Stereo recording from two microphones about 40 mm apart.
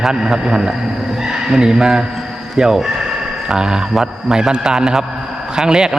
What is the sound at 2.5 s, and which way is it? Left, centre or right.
Speech, centre.